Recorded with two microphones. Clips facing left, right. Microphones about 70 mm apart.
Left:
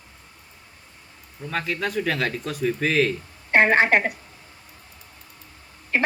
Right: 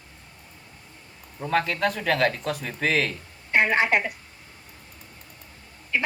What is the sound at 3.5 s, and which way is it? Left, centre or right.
Speech, left.